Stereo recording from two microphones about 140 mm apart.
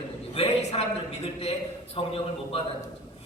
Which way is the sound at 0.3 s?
50° left (ahead or behind).